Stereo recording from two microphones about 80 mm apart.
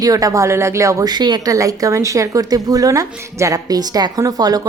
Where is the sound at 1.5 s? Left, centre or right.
Right.